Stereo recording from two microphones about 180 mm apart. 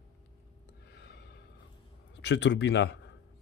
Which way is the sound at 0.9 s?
70° left (ahead or behind).